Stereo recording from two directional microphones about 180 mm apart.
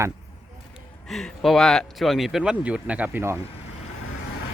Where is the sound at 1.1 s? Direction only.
Centre (ahead or behind).